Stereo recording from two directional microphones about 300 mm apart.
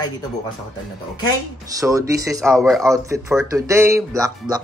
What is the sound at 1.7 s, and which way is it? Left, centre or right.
Speech, centre.